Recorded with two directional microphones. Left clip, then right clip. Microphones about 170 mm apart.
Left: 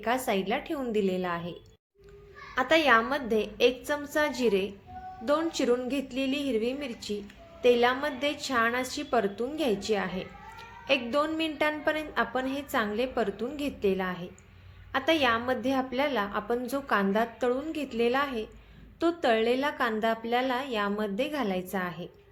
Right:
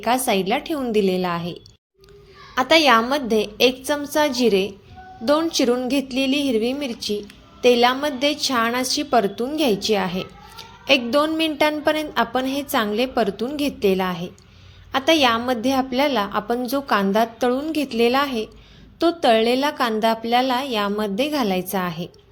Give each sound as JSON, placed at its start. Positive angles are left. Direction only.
{"t": 0.0, "sound": "a woman's voice", "side_deg": -40}
{"t": 2.6, "sound": "a woman's voice", "side_deg": -40}